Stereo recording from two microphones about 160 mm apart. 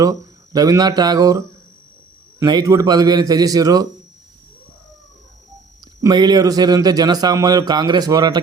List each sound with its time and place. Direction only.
0.0 s speech: 20° right (ahead or behind)
6.0 s speech: 25° right (ahead or behind)